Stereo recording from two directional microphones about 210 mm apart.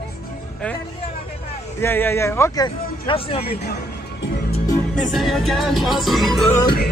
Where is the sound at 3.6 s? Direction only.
50° left (ahead or behind).